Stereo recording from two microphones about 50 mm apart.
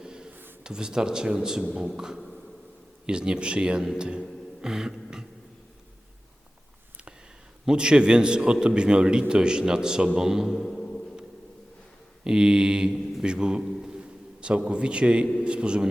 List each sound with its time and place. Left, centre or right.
0.0 s a sound: centre
0.6 s a man's voice: centre
3.1 s speech: centre
7.6 s a man's voice: centre
10.7 s music: centre
12.2 s a man's voice: centre
13.8 s a sound: centre
14.7 s a man's voice: centre